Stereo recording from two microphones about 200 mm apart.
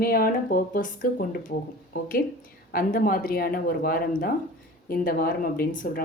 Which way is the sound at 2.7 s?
45° left (ahead or behind).